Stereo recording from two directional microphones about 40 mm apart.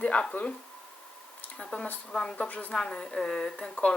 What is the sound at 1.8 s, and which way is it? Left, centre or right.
Speech, centre.